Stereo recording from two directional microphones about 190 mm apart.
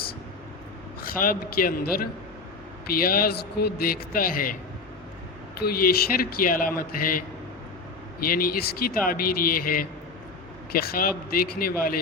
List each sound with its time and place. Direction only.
1.0 s a man's voice: 50° left (ahead or behind)
5.5 s a man's voice: 55° left (ahead or behind)